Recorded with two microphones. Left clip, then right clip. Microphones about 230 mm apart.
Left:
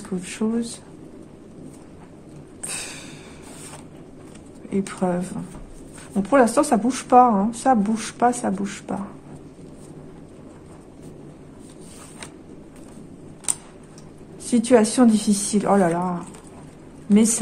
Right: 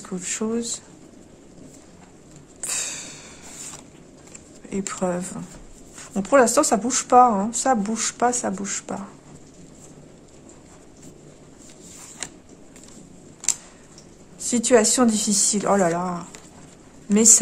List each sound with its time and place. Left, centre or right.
0.2 s speech: centre
2.6 s a sound: centre
4.6 s speech: centre
14.4 s speech: centre